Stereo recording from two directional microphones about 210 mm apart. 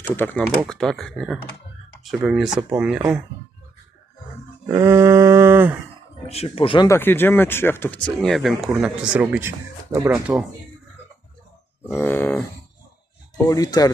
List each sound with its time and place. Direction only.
0.1 s speech: 10° left (ahead or behind)
4.7 s a sound: 15° right (ahead or behind)
6.2 s speech: 30° left (ahead or behind); by 10.4 s centre (ahead or behind)
11.9 s speech: 10° left (ahead or behind)